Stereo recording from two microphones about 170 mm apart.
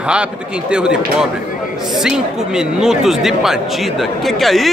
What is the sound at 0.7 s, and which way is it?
Speech, 5° right (ahead or behind).